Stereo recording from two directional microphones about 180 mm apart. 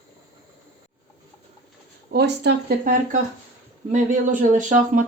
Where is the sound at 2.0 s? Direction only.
65° right (ahead or behind).